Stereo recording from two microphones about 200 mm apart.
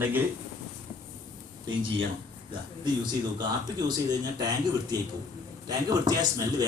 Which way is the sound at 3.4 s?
20° right (ahead or behind).